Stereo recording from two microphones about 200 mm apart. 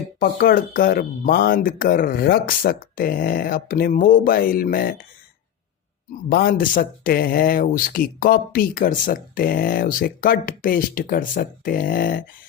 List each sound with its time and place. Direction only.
0.2 s speech: 50° left (ahead or behind)
6.3 s speech: 45° left (ahead or behind)